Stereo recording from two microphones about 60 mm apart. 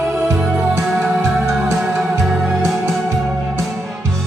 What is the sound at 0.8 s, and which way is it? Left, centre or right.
Music, centre.